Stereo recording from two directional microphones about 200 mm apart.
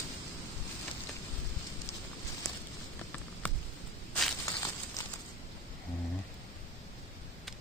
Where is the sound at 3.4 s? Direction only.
5° left (ahead or behind).